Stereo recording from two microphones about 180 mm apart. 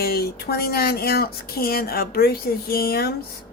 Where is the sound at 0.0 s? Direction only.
60° left (ahead or behind).